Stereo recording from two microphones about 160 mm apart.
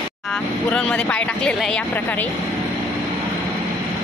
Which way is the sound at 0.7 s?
10° left (ahead or behind).